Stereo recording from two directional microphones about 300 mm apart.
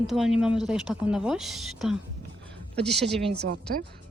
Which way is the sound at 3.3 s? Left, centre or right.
Right.